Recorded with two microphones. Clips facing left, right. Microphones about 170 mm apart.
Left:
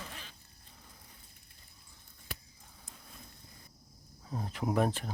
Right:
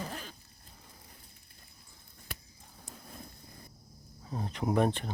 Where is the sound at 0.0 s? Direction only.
40° right (ahead or behind).